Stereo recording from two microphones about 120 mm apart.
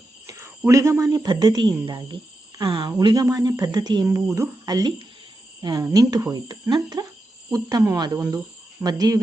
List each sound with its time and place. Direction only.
0.3 s speech: 20° right (ahead or behind)
4.0 s speech: 25° right (ahead or behind)